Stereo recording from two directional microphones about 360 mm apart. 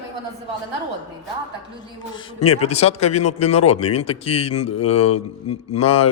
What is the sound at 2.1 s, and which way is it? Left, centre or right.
A man's voice, centre.